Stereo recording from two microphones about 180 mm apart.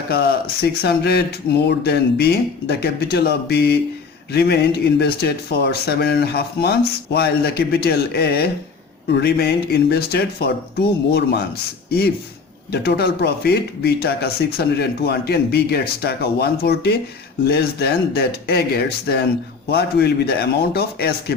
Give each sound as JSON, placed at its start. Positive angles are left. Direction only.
{"t": 0.1, "sound": "speech", "side_deg": 60}